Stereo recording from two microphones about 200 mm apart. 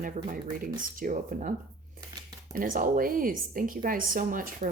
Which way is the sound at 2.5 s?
45° right (ahead or behind).